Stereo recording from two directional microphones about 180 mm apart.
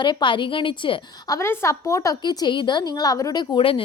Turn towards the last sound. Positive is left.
turn(degrees=30)  # may be behind; listen again after turning